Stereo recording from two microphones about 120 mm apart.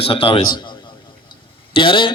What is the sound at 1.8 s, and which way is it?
Speech, 45° left (ahead or behind).